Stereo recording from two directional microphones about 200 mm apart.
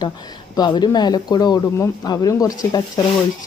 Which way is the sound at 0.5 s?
20° left (ahead or behind).